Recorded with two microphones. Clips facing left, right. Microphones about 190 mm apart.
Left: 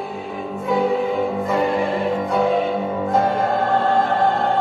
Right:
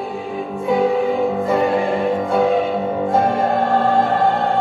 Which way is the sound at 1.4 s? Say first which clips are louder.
Right 3 dB; 30° right (ahead or behind).